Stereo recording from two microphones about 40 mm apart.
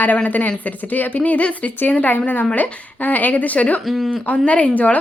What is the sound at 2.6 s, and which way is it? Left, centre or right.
Speech, left.